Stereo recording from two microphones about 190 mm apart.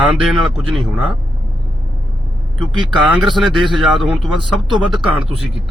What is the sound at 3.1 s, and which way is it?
Speech, centre (ahead or behind).